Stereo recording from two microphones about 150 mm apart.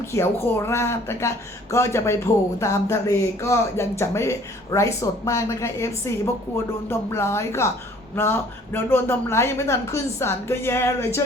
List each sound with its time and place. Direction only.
0.0 s speech: 15° left (ahead or behind)